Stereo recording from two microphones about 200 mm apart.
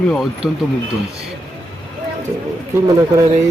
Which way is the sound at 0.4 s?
Centre (ahead or behind).